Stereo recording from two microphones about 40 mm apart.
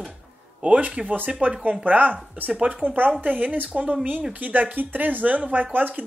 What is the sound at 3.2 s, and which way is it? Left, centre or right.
Speech, right.